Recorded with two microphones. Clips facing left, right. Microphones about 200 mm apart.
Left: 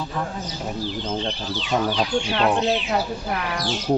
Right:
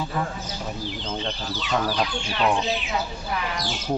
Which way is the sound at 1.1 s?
25° left (ahead or behind).